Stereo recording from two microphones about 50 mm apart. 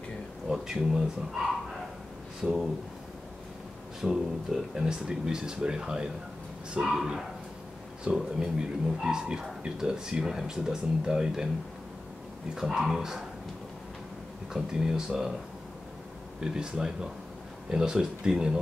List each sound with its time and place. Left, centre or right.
0.5 s speech: centre
2.4 s speech: centre
4.0 s speech: centre
12.5 s speech: centre
14.5 s speech: centre
16.3 s speech: centre